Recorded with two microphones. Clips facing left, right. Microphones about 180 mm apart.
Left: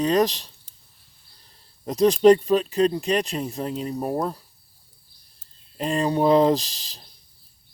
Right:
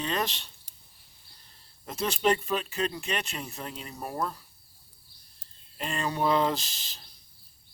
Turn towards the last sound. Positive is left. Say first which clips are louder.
# left 11 dB
turn(degrees=35)  # may be behind; listen again after turning